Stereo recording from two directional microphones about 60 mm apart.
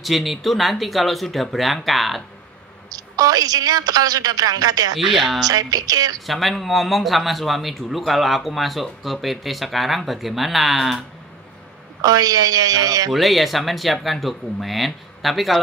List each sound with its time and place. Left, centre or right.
0.0 s a man's voice: centre
2.9 s a woman's voice: right
4.9 s a man's voice: centre
5.4 s a woman's voice: right
6.2 s a man's voice: centre
12.0 s a woman's voice: right
13.1 s a man's voice: centre